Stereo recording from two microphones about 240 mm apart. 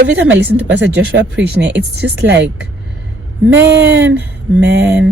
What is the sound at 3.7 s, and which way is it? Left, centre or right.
Speech, right.